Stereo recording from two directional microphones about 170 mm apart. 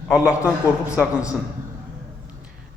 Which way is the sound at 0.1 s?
5° right (ahead or behind).